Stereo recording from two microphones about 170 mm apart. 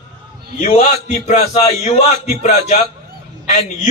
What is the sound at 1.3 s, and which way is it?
A man's voice, 40° left (ahead or behind).